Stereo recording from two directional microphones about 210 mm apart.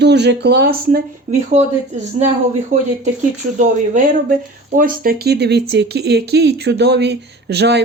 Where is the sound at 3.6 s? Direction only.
40° right (ahead or behind).